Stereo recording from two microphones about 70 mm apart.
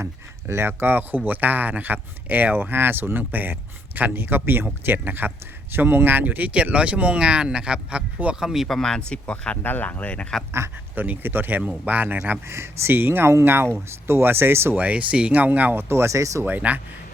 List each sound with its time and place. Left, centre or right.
0.0 s speech: right; by 8.4 s centre
8.4 s speech: centre
10.9 s speech: right
12.5 s speech: right
14.8 s speech: centre; by 16.4 s right
16.4 s speech: right